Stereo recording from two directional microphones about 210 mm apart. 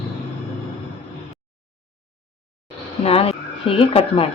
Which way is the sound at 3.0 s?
25° left (ahead or behind).